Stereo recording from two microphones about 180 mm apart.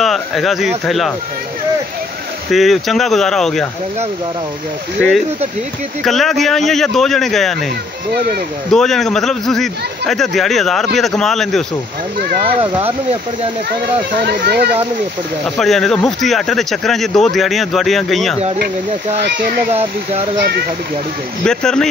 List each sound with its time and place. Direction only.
0.0 s speech: centre (ahead or behind)
2.5 s speech: centre (ahead or behind)
6.0 s speech: centre (ahead or behind)
8.7 s speech: centre (ahead or behind)
14.2 s speech: 65° right (ahead or behind)
15.4 s speech: centre (ahead or behind)
19.2 s speech: 55° right (ahead or behind)
19.7 s speech: 35° right (ahead or behind)
21.5 s speech: 5° left (ahead or behind)